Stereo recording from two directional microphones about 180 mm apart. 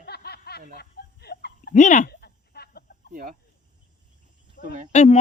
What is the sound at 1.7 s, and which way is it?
Speech, 45° left (ahead or behind).